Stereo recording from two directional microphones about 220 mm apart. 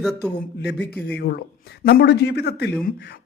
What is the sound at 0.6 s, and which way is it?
A man's voice, 50° left (ahead or behind).